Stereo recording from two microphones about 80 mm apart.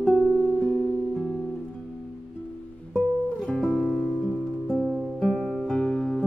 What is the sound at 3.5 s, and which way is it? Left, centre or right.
Music, centre.